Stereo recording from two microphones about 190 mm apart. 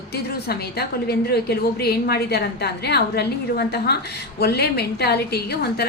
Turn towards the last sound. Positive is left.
turn(degrees=60)  # may be behind; listen again after turning